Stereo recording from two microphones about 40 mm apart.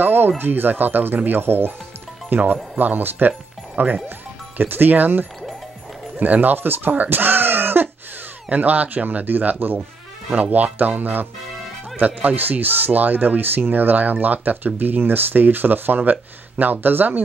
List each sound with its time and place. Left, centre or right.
0.0 s a sound: right
0.4 s speech: right
2.2 s speech: right
8.5 s speech: right